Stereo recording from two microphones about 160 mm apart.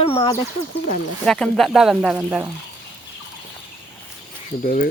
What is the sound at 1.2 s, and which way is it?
Speech, 5° left (ahead or behind).